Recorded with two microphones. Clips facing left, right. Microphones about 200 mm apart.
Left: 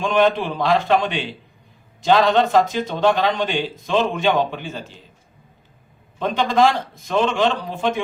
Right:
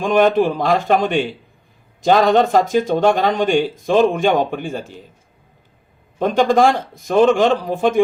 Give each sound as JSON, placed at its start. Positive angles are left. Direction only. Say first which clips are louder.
{"t": 0.0, "sound": "speech", "louder": "right 4 dB", "side_deg": -45}
{"t": 6.1, "sound": "speech", "louder": "right 4 dB", "side_deg": -50}